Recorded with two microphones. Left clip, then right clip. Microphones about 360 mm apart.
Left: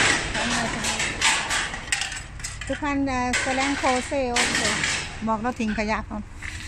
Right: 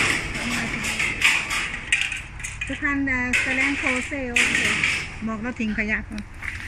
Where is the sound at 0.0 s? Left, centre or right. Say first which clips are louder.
Left 1 dB; left.